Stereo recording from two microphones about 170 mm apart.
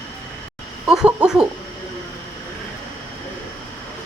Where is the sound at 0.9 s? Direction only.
5° right (ahead or behind).